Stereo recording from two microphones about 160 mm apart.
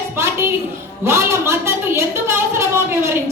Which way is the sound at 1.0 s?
15° right (ahead or behind).